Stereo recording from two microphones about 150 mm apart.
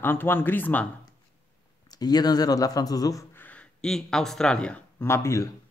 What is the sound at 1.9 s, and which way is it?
Speech, 25° left (ahead or behind).